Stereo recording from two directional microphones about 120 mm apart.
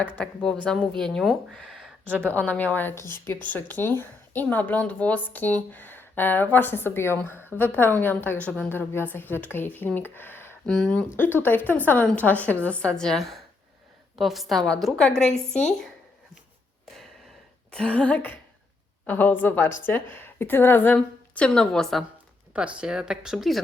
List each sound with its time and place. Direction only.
0.2 s a woman's voice: 10° left (ahead or behind)
10.7 s a woman's voice: 5° left (ahead or behind)
11.2 s a woman's voice: 15° left (ahead or behind)
17.7 s a woman's voice: 10° left (ahead or behind)
22.5 s speech: 10° right (ahead or behind)